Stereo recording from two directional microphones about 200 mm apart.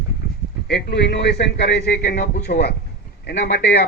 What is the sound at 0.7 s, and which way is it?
A man's voice, 55° left (ahead or behind).